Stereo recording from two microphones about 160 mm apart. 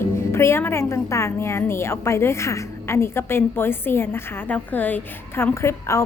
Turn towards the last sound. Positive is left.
turn(degrees=20)  # may be behind; listen again after turning